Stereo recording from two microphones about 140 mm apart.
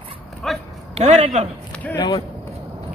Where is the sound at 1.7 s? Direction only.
10° left (ahead or behind).